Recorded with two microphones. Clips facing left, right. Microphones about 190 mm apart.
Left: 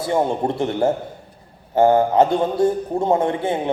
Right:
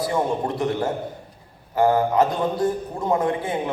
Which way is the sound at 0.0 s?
25° left (ahead or behind).